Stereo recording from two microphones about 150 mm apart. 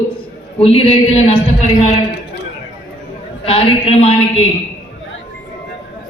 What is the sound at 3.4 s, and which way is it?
A woman's voice, 40° left (ahead or behind).